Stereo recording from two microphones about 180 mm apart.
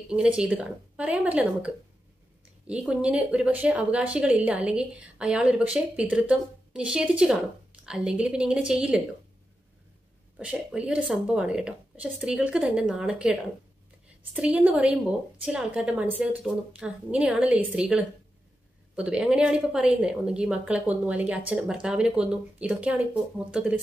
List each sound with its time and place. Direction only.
0.1 s speech: 5° right (ahead or behind)
10.3 s speech: 5° right (ahead or behind)